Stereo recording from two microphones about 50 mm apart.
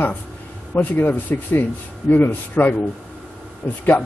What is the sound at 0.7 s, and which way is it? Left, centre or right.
Speech, left.